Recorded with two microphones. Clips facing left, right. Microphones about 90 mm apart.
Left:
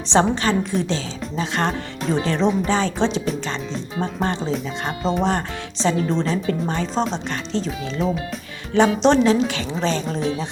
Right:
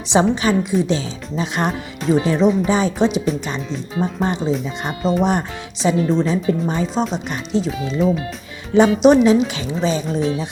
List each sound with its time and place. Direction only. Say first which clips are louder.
0.1 s speech: right 2 dB; 10° right (ahead or behind)